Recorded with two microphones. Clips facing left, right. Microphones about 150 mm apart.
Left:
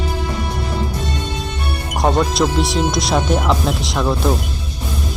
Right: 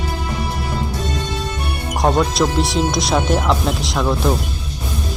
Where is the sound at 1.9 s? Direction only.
Centre (ahead or behind).